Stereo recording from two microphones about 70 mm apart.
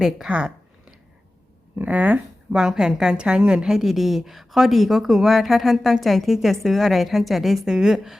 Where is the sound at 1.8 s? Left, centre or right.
Right.